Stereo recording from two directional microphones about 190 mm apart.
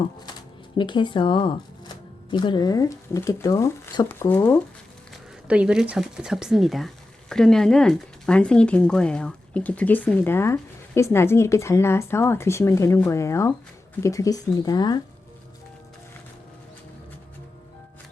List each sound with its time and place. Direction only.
0.8 s speech: 25° left (ahead or behind)
5.5 s speech: 5° right (ahead or behind); by 15.0 s 20° left (ahead or behind)